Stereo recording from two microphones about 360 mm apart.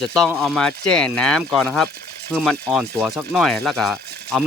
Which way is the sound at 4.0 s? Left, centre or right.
Right.